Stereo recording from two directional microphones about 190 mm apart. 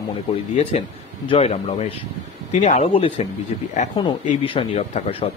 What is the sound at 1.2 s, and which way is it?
Speech, 30° left (ahead or behind).